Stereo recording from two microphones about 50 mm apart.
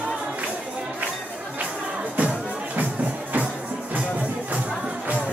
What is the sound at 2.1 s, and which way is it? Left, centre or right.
Music, right.